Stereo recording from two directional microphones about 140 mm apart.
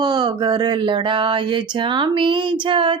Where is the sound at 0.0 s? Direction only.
30° right (ahead or behind).